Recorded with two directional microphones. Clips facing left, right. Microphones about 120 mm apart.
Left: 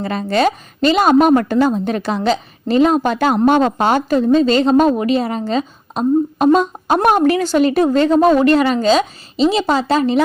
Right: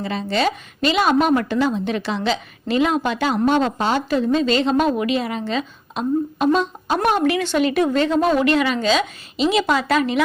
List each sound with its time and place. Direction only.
0.0 s a woman's voice: 50° left (ahead or behind); by 10.2 s 30° left (ahead or behind)